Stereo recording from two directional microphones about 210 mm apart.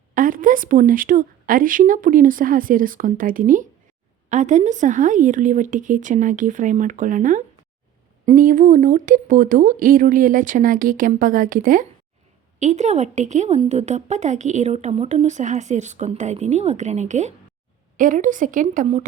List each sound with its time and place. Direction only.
0.1 s a woman's voice: 40° right (ahead or behind)